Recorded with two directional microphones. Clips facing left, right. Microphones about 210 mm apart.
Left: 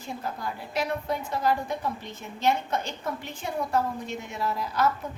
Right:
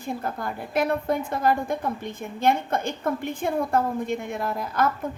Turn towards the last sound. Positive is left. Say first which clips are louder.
# right 2 dB
turn(degrees=-50)  # may be behind; listen again after turning